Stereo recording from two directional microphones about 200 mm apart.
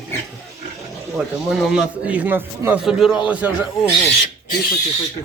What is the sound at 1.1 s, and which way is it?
Speech, 5° right (ahead or behind).